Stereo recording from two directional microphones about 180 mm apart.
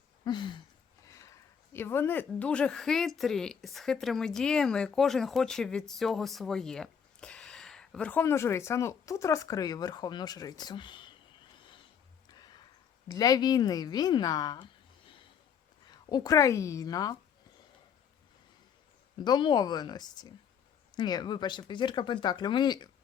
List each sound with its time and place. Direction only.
0.3 s speech: 25° left (ahead or behind)
13.1 s speech: 20° left (ahead or behind)
19.2 s speech: 25° left (ahead or behind)